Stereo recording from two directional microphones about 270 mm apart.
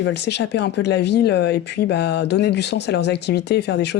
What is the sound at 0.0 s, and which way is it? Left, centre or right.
Speech, left.